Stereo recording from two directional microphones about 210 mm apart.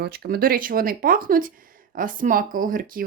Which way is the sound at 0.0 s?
45° right (ahead or behind).